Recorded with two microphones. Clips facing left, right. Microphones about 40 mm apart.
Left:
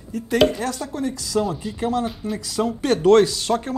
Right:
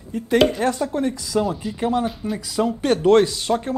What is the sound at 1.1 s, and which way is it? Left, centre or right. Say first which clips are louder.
Speech: right 1 dB; centre.